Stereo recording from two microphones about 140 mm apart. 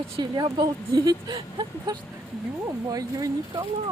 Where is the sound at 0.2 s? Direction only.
35° right (ahead or behind).